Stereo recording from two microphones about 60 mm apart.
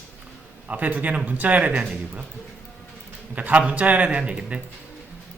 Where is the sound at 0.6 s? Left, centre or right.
Right.